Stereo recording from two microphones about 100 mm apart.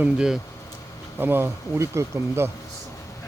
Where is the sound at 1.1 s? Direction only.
20° right (ahead or behind).